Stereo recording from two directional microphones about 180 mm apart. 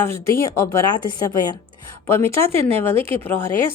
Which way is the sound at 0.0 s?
15° left (ahead or behind).